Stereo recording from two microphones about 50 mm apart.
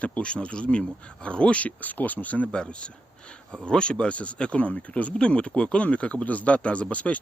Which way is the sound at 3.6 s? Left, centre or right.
Centre.